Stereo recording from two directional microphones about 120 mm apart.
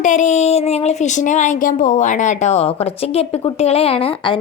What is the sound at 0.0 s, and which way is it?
A woman's voice, 90° left.